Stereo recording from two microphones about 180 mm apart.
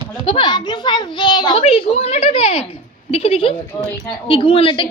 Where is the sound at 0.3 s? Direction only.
25° left (ahead or behind).